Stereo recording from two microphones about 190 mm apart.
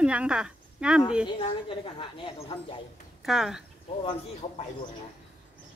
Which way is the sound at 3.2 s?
Centre (ahead or behind).